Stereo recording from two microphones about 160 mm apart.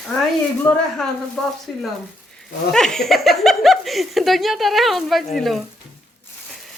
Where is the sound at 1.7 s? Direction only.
5° left (ahead or behind).